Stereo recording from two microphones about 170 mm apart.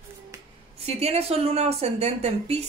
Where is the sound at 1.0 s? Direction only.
35° right (ahead or behind).